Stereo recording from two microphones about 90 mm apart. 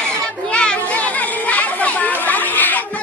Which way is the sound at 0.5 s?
10° left (ahead or behind).